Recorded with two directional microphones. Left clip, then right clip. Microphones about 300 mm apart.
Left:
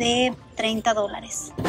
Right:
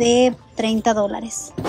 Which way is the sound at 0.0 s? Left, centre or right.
Centre.